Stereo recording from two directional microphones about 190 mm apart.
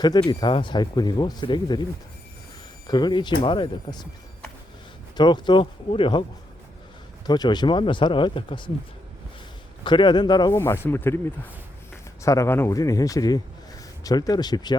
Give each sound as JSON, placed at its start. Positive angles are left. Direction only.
{"t": 0.0, "sound": "speech", "side_deg": 20}
{"t": 2.8, "sound": "speech", "side_deg": 20}
{"t": 5.1, "sound": "speech", "side_deg": 25}
{"t": 7.3, "sound": "speech", "side_deg": 20}
{"t": 9.8, "sound": "speech", "side_deg": 25}
{"t": 10.6, "sound": "speech", "side_deg": 15}
{"t": 12.2, "sound": "speech", "side_deg": 15}